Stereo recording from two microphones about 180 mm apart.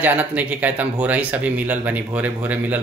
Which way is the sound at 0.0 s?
10° right (ahead or behind).